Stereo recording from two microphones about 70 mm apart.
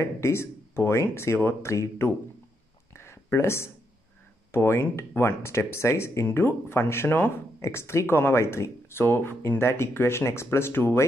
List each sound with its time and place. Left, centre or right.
0.0 s speech: left
2.9 s a sound: left
4.5 s speech: left
9.0 s speech: left